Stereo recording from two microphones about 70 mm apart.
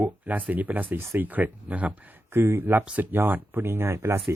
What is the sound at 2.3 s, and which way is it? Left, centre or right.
Speech, right.